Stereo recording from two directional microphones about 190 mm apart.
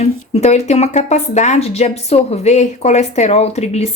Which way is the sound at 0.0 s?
35° left (ahead or behind).